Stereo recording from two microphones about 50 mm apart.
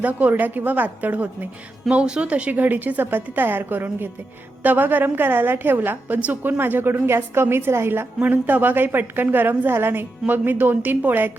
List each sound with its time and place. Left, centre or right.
0.0 s a woman's voice: right
1.9 s speech: centre
2.3 s a woman's voice: right
8.2 s a woman's voice: right